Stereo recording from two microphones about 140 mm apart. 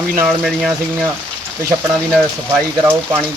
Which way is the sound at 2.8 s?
15° right (ahead or behind).